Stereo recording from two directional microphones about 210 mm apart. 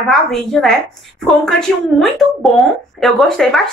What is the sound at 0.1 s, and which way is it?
Speech, centre (ahead or behind).